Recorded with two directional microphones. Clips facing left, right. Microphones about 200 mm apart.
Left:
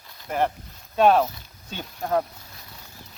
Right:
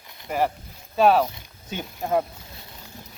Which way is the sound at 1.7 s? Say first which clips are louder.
Right 1 dB; 15° right (ahead or behind).